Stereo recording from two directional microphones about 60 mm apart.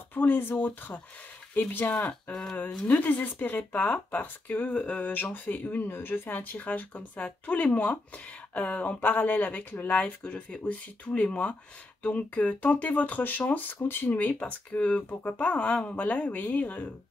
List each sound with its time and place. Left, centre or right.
0.1 s speech: left
5.1 s speech: left
14.4 s speech: left